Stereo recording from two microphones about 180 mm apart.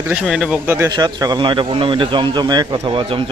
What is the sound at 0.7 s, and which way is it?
Speech, 20° right (ahead or behind).